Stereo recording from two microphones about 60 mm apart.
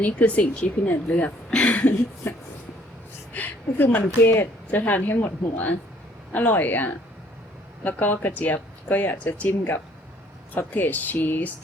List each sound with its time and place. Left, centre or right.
0.0 s speech: left
2.2 s speech: left
3.3 s speech: left
6.3 s speech: left